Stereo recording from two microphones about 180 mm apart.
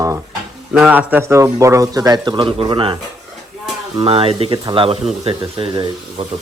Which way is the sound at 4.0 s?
30° right (ahead or behind).